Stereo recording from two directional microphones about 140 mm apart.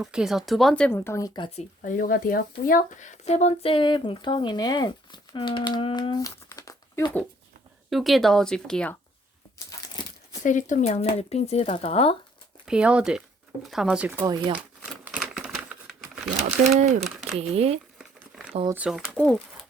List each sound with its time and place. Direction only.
0.0 s speech: 5° right (ahead or behind)
0.9 s speech: 15° left (ahead or behind)
1.8 s speech: 85° left; by 7.2 s 20° left (ahead or behind)
7.9 s speech: centre (ahead or behind)
10.4 s speech: 65° left (ahead or behind); by 12.1 s 45° left (ahead or behind)
12.6 s speech: 5° right (ahead or behind)
14.3 s speech: 30° right (ahead or behind)
15.0 s a sound: 10° right (ahead or behind)
16.7 s speech: 60° right (ahead or behind)
17.3 s speech: 45° right (ahead or behind)
18.7 s speech: 5° right (ahead or behind)
19.1 s speech: 10° left (ahead or behind)